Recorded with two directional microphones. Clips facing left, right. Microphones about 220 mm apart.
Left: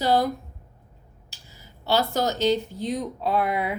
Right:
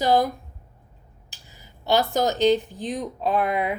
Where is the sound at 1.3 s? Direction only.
15° right (ahead or behind).